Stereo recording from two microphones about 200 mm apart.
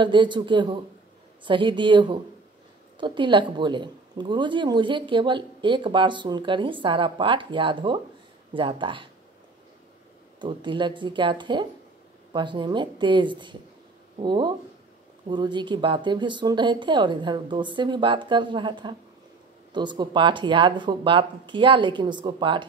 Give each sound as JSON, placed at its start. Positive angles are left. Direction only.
{"t": 0.0, "sound": "speech", "side_deg": -25}
{"t": 10.4, "sound": "speech", "side_deg": -25}